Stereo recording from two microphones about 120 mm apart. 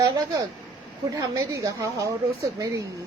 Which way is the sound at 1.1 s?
30° right (ahead or behind).